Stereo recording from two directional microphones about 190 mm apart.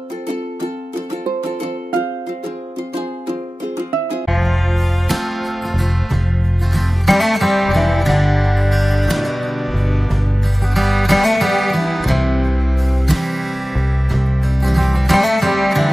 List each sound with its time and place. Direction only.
4.3 s music: centre (ahead or behind)
6.7 s music: centre (ahead or behind)
10.7 s music: centre (ahead or behind)